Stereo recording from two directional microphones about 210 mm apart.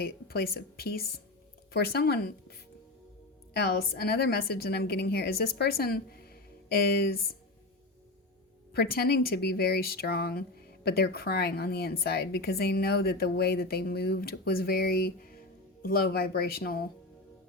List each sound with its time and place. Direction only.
0.0 s speech: 45° left (ahead or behind)
8.7 s speech: 50° left (ahead or behind)